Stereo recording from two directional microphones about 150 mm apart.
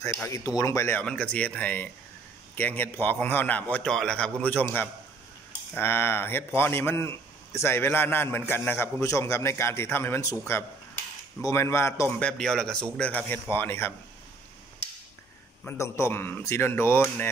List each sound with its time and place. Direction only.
0.0 s a man's voice: 20° left (ahead or behind)
11.4 s a man's voice: 15° left (ahead or behind)
12.3 s a man's voice: 5° left (ahead or behind)
15.6 s a man's voice: 15° left (ahead or behind)